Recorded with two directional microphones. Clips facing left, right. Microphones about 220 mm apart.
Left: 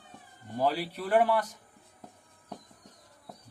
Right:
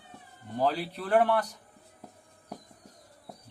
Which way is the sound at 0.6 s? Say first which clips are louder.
Even; 10° left (ahead or behind).